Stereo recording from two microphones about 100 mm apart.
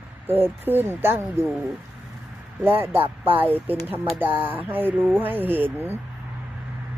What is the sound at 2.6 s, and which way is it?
Speech, 20° right (ahead or behind).